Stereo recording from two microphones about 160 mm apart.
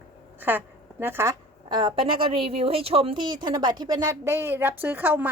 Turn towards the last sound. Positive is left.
turn(degrees=-10)  # may be behind; listen again after turning